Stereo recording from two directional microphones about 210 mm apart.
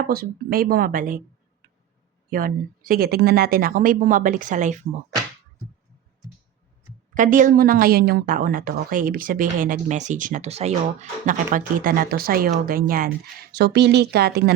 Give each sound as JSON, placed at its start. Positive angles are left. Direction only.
{"t": 0.0, "sound": "speech", "side_deg": -45}
{"t": 2.3, "sound": "a woman's voice", "side_deg": -40}
{"t": 7.1, "sound": "a woman's voice", "side_deg": -40}